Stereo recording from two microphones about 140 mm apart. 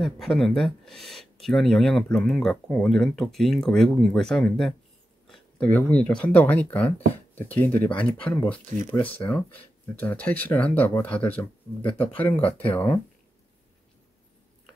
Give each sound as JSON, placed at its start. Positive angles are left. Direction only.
{"t": 0.0, "sound": "speech", "side_deg": 5}
{"t": 12.4, "sound": "speech", "side_deg": 45}